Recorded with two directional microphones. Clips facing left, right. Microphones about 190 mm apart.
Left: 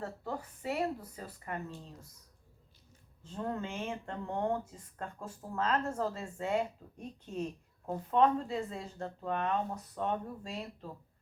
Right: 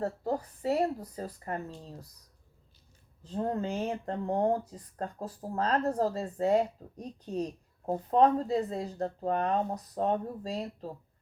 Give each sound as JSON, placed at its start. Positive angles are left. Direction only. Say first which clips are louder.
{"t": 0.0, "sound": "speech", "louder": "right 8 dB", "side_deg": -40}
{"t": 3.2, "sound": "speech", "louder": "right 6 dB", "side_deg": -35}